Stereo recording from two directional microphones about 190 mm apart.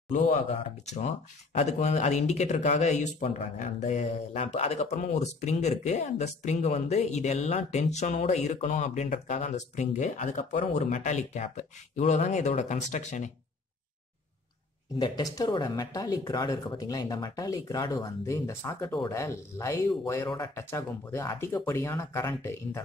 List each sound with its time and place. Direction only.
0.1 s speech: 35° left (ahead or behind)
15.0 s speech: 20° left (ahead or behind)